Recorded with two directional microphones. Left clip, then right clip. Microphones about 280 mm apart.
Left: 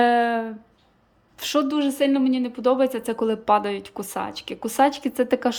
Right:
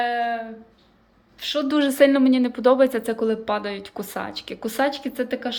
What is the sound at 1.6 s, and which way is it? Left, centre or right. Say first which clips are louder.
Speech: right 5 dB; centre.